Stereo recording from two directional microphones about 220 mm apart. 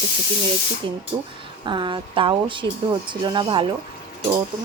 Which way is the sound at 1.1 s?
15° right (ahead or behind).